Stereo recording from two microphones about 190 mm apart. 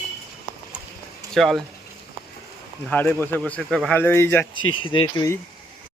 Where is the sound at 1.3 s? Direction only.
Centre (ahead or behind).